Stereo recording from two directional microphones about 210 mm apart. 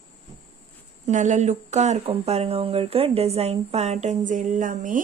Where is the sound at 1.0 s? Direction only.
35° right (ahead or behind).